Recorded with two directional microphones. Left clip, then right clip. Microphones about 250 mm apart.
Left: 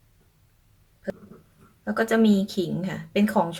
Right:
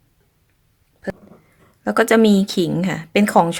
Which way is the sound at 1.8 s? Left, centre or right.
Right.